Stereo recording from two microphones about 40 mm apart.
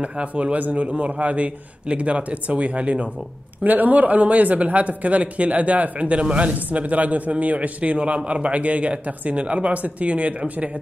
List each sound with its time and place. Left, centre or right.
0.0 s a man's voice: right
3.6 s a man's voice: right